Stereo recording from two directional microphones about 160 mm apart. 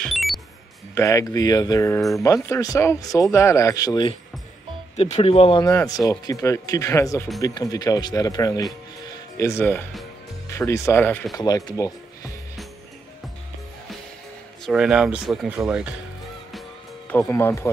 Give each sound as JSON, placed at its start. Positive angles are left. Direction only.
{"t": 0.0, "sound": "music", "side_deg": 0}
{"t": 0.9, "sound": "speech", "side_deg": 20}
{"t": 4.9, "sound": "speech", "side_deg": 40}
{"t": 5.7, "sound": "speech", "side_deg": 20}
{"t": 11.3, "sound": "speech", "side_deg": 25}
{"t": 14.7, "sound": "speech", "side_deg": -5}
{"t": 17.3, "sound": "speech", "side_deg": 15}